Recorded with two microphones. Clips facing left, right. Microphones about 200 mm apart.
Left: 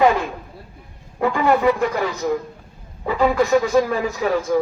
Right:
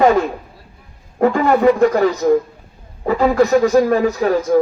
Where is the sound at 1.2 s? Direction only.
40° right (ahead or behind).